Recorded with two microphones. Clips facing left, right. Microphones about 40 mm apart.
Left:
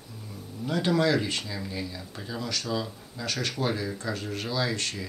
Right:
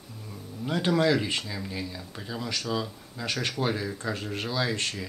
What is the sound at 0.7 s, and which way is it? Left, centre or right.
Speech, centre.